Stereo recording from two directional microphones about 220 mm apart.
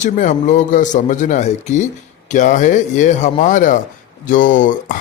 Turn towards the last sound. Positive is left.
turn(degrees=35)  # may be behind; listen again after turning